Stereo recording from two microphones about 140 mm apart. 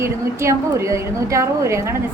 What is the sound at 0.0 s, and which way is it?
A woman's voice, 20° right (ahead or behind).